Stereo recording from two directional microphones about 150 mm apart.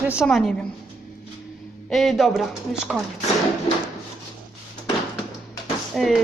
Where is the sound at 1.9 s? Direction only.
Centre (ahead or behind).